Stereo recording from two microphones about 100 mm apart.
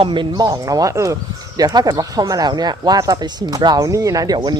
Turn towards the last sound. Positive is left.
turn(degrees=-45)  # may be behind; listen again after turning